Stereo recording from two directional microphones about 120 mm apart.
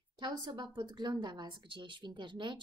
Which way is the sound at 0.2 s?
35° right (ahead or behind).